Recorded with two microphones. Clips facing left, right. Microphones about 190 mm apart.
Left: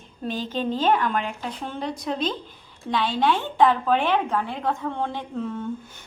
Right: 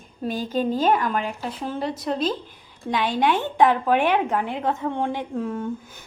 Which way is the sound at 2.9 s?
15° right (ahead or behind).